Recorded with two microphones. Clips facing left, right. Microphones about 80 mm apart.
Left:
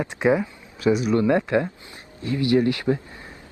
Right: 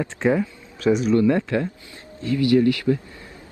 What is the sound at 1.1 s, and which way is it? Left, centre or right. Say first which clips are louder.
Speech: right 1 dB; left.